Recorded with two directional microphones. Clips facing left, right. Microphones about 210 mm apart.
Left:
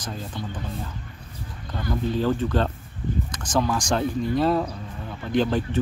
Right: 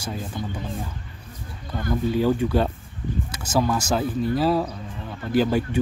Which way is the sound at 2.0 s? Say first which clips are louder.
Right 2 dB; 10° right (ahead or behind).